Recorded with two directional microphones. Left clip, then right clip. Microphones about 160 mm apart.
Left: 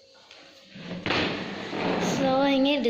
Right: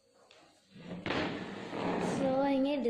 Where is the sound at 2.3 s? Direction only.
Centre (ahead or behind).